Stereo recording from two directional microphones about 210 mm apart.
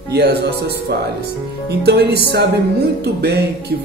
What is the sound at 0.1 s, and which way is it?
Music, 50° right (ahead or behind).